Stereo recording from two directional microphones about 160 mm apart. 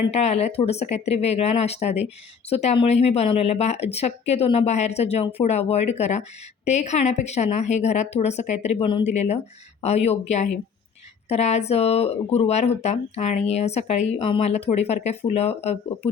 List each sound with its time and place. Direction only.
0.1 s speech: 40° left (ahead or behind)